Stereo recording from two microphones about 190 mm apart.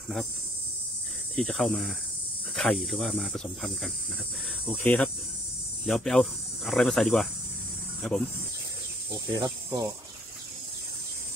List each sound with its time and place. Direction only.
1.3 s speech: centre (ahead or behind)
4.8 s cricket: 10° left (ahead or behind)
5.9 s speech: centre (ahead or behind)
9.3 s speech: 20° right (ahead or behind)